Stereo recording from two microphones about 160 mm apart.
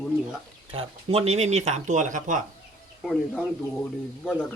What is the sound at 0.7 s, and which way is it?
Speech, 35° right (ahead or behind).